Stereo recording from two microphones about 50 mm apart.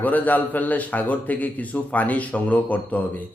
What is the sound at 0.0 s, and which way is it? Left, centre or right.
Speech, left.